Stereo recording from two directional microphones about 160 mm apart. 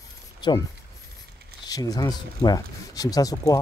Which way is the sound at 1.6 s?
25° left (ahead or behind).